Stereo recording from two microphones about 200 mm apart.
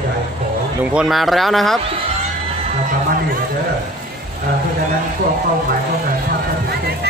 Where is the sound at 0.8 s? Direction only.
5° right (ahead or behind).